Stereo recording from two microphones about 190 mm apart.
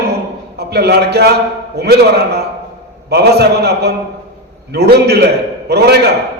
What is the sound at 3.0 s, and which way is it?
A man's voice, 60° right (ahead or behind).